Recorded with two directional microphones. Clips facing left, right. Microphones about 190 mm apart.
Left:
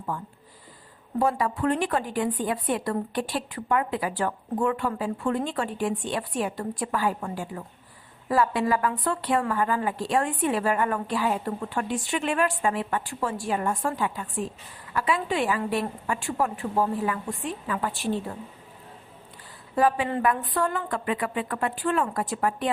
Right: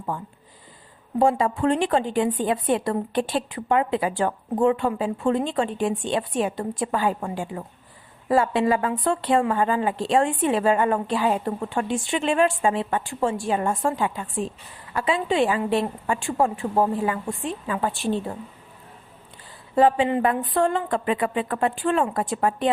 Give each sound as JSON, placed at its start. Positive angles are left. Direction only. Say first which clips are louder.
{"t": 1.2, "sound": "a woman's voice", "louder": "right 4 dB", "side_deg": -25}
{"t": 19.7, "sound": "a woman's voice", "louder": "right 5 dB", "side_deg": -25}